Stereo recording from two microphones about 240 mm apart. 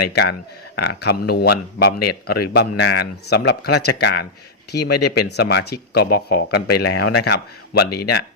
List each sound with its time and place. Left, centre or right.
0.1 s a man's voice: left